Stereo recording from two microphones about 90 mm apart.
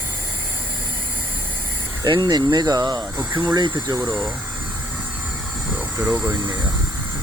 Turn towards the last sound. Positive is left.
turn(degrees=-30)  # may be behind; listen again after turning